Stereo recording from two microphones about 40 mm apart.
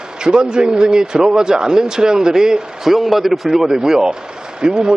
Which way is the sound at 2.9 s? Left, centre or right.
Centre.